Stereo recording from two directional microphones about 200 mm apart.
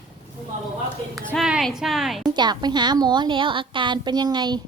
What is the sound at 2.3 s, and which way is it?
A woman's voice, 20° right (ahead or behind).